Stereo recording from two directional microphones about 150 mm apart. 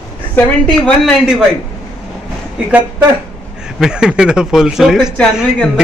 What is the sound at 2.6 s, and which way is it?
Speech, 10° right (ahead or behind).